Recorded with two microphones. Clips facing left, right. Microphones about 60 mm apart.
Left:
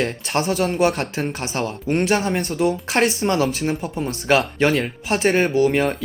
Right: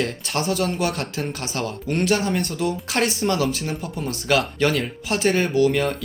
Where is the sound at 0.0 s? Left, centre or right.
Left.